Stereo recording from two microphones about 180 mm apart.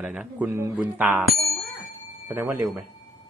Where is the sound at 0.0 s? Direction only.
5° right (ahead or behind).